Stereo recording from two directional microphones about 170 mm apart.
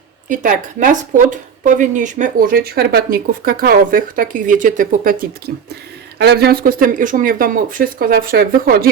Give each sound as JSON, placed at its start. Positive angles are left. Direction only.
{"t": 0.3, "sound": "speech", "side_deg": -50}
{"t": 6.1, "sound": "speech", "side_deg": -75}